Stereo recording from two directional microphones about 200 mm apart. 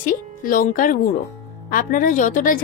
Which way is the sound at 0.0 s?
45° left (ahead or behind).